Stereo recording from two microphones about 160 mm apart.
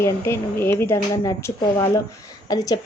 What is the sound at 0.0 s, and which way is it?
A woman's voice, 15° left (ahead or behind).